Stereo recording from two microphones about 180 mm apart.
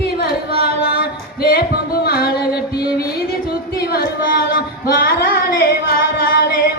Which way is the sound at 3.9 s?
55° left (ahead or behind).